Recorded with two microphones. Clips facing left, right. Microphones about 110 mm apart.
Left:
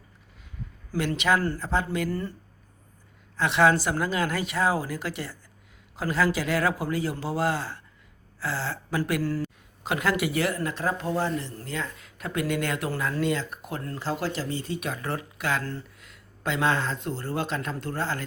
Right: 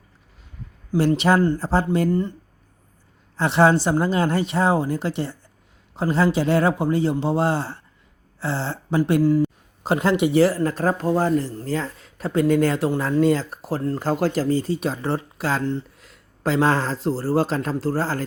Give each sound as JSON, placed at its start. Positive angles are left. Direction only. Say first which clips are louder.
{"t": 0.9, "sound": "speech", "louder": "right 7 dB", "side_deg": -35}
{"t": 2.0, "sound": "speech", "louder": "right 9 dB", "side_deg": -20}
{"t": 3.3, "sound": "speech", "louder": "right 4 dB", "side_deg": -30}
{"t": 9.2, "sound": "speech", "louder": "right 10 dB", "side_deg": -15}
{"t": 9.8, "sound": "speech", "louder": "right 7 dB", "side_deg": -30}